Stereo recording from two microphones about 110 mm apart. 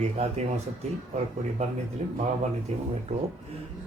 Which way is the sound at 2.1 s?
75° right (ahead or behind).